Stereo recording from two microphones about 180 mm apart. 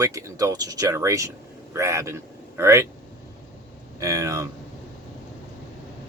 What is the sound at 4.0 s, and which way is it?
Speech, 20° right (ahead or behind).